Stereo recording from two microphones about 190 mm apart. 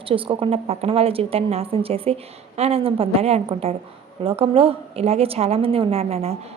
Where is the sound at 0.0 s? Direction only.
30° right (ahead or behind).